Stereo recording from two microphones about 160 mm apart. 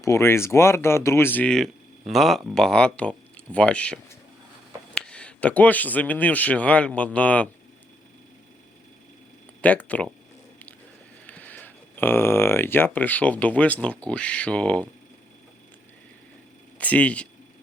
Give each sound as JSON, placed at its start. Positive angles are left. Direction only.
{"t": 0.0, "sound": "speech", "side_deg": 15}
{"t": 9.6, "sound": "speech", "side_deg": 10}
{"t": 11.3, "sound": "speech", "side_deg": 10}
{"t": 16.7, "sound": "speech", "side_deg": 10}